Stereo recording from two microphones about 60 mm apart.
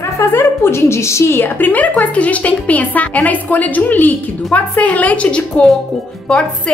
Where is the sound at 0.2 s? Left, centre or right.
Left.